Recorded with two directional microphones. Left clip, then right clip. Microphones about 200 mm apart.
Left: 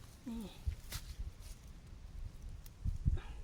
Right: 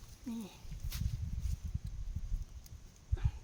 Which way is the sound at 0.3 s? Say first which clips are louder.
Right 3 dB; 25° right (ahead or behind).